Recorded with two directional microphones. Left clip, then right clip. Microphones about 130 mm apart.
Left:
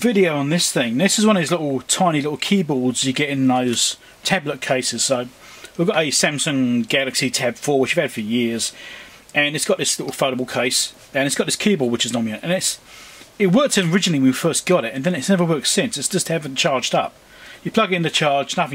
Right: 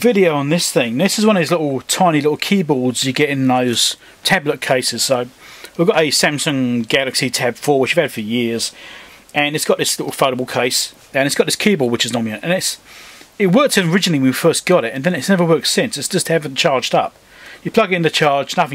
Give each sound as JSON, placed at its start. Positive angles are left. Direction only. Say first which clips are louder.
{"t": 0.0, "sound": "speech", "louder": "right 4 dB", "side_deg": -20}